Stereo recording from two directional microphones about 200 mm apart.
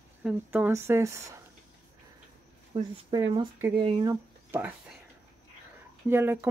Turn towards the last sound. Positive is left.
turn(degrees=-10)  # may be behind; listen again after turning